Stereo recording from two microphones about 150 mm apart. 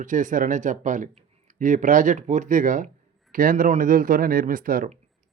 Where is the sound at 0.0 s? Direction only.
60° right (ahead or behind).